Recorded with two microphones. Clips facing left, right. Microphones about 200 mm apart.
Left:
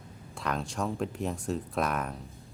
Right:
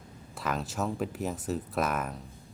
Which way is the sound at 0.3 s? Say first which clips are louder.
Even; 5° right (ahead or behind).